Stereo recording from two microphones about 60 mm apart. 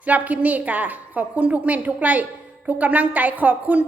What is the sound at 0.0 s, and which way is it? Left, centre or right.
A woman's voice, right.